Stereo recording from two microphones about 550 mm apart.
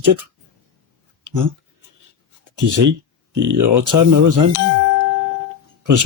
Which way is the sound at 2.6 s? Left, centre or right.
Right.